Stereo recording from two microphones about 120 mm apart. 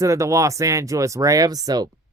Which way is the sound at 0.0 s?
25° right (ahead or behind).